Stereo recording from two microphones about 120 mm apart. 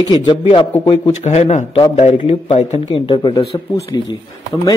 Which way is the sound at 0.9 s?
60° left (ahead or behind).